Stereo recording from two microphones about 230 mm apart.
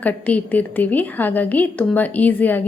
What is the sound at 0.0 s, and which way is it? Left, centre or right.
A woman's voice, centre.